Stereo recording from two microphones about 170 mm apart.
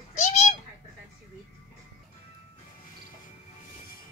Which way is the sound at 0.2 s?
45° left (ahead or behind).